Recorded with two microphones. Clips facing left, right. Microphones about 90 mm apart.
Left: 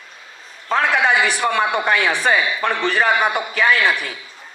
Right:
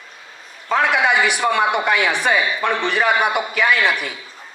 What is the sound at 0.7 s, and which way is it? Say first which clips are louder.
Speech: even; 35° left (ahead or behind).